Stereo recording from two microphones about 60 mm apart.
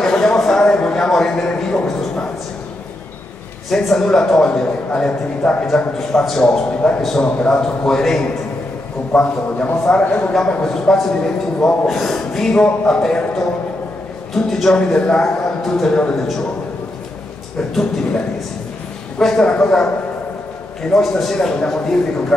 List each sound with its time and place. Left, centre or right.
0.0 s speech: centre
3.7 s a man's voice: centre
5.9 s a man's voice: centre
6.4 s a man's voice: centre
7.0 s a man's voice: centre
7.2 s speech: centre
7.6 s a man's voice: centre
9.1 s speech: left
10.3 s a man's voice: centre
19.1 s a man's voice: centre
20.9 s a man's voice: centre